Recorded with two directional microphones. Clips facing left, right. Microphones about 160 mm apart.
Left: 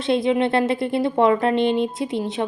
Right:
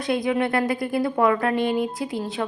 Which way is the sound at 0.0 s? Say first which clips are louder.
Left 3 dB; 25° left (ahead or behind).